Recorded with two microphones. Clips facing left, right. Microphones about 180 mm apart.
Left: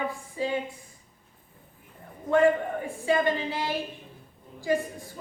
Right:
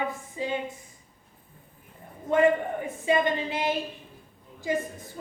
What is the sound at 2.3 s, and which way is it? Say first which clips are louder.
A woman's voice: even; 20° right (ahead or behind).